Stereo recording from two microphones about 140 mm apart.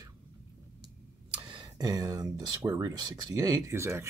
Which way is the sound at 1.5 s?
30° right (ahead or behind).